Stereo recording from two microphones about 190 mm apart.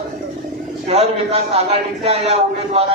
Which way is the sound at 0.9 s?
35° right (ahead or behind).